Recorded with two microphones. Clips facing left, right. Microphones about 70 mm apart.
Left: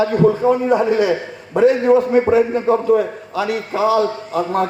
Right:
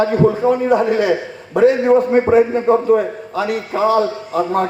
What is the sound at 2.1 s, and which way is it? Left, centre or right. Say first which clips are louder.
A man's voice: right 1 dB; right.